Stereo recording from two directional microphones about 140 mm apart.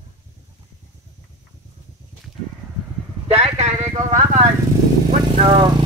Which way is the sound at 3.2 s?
50° right (ahead or behind).